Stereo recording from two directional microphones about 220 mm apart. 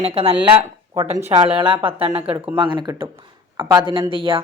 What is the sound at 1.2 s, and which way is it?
Speech, 10° right (ahead or behind).